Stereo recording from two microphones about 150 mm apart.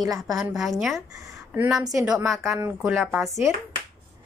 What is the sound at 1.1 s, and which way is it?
A woman's voice, 15° right (ahead or behind).